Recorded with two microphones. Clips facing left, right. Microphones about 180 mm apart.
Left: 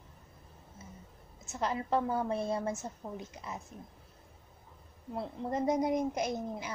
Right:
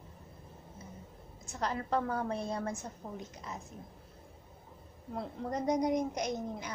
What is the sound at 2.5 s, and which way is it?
Speech, 25° left (ahead or behind).